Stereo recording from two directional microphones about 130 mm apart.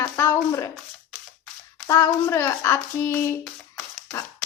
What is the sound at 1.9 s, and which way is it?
A woman's voice, 25° left (ahead or behind).